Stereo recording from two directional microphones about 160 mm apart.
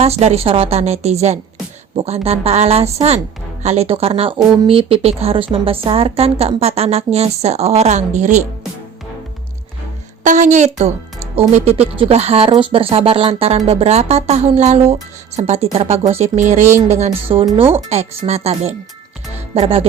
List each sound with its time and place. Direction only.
0.0 s a woman's voice: 40° right (ahead or behind)
10.2 s a woman's voice: 50° right (ahead or behind)